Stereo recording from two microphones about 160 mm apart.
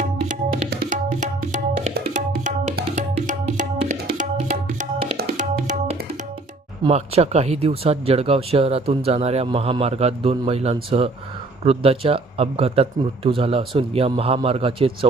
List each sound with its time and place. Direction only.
0.9 s tabla: 55° right (ahead or behind)
2.9 s music: 50° right (ahead or behind)
4.2 s tabla: 50° right (ahead or behind)
6.8 s speech: 40° right (ahead or behind)